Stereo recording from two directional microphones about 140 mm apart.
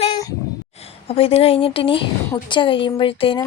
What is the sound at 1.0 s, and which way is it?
A child's voice, 45° left (ahead or behind).